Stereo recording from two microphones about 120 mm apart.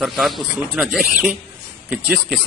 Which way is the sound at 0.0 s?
Centre (ahead or behind).